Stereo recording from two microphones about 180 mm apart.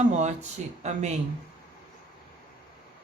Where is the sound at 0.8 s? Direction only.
40° right (ahead or behind).